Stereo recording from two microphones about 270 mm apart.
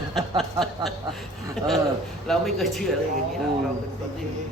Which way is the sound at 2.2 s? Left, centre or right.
Centre.